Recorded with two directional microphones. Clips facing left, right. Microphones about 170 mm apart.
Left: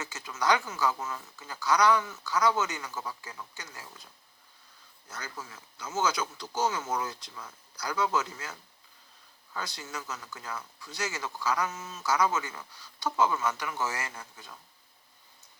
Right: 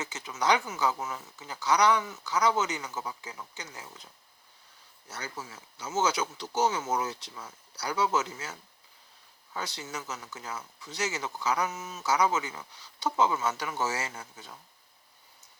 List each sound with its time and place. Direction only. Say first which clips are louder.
0.0 s speech: right 1 dB; 20° right (ahead or behind)
5.0 s speech: right 2 dB; 20° right (ahead or behind)